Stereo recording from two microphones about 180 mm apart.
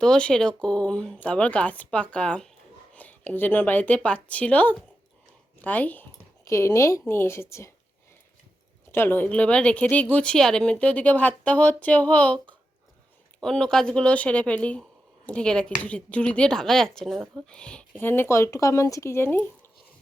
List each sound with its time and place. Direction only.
0.0 s a woman's voice: 5° left (ahead or behind)
8.9 s speech: 10° left (ahead or behind)